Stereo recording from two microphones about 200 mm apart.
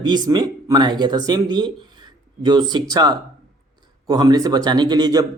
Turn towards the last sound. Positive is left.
turn(degrees=-20)  # may be behind; listen again after turning